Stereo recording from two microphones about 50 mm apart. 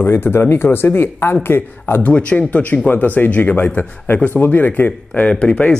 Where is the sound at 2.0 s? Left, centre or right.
Left.